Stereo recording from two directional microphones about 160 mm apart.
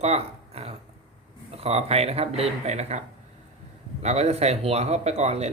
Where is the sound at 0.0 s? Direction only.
40° right (ahead or behind).